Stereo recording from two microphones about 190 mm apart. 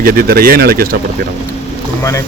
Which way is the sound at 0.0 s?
55° right (ahead or behind).